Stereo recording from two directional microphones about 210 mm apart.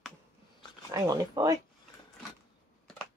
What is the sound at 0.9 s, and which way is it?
Speech, 15° right (ahead or behind).